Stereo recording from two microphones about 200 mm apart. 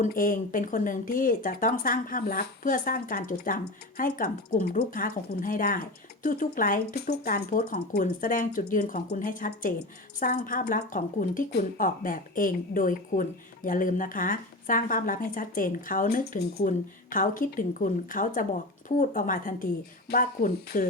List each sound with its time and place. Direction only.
0.0 s a woman's voice: 40° left (ahead or behind)